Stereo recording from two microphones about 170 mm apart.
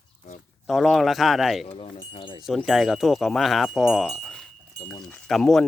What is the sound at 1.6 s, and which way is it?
Speech, 35° left (ahead or behind).